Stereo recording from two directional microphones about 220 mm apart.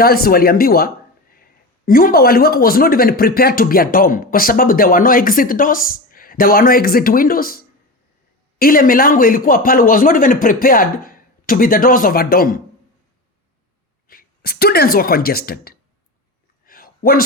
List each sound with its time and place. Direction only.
0.0 s a man's voice: 45° left (ahead or behind)
14.1 s speech: 45° left (ahead or behind)
16.6 s a sound: 40° left (ahead or behind)